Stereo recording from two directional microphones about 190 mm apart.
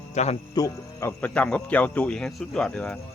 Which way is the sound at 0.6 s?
15° left (ahead or behind).